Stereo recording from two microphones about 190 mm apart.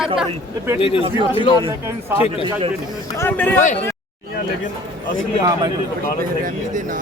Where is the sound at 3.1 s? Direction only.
10° left (ahead or behind).